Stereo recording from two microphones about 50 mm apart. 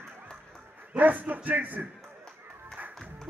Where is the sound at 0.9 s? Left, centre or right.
Right.